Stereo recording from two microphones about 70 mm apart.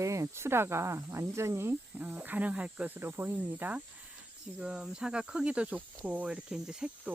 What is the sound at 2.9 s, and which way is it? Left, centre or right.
Speech, right.